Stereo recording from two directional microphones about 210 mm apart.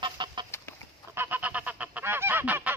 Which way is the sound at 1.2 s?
10° right (ahead or behind).